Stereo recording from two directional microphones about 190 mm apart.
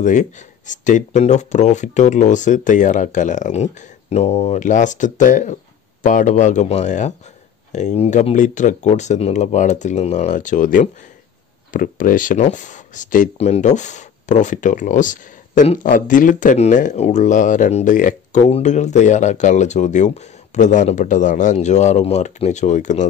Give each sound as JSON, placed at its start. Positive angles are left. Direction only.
{"t": 0.0, "sound": "speech", "side_deg": 40}